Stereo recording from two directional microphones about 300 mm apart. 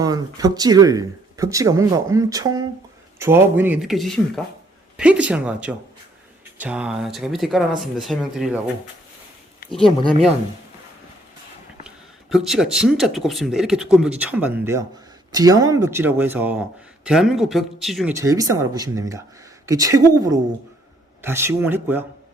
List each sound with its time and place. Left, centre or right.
0.0 s speech: centre
10.0 s speech: centre
12.3 s speech: centre